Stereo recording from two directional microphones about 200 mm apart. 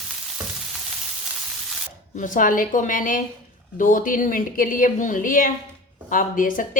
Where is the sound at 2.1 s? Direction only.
40° left (ahead or behind).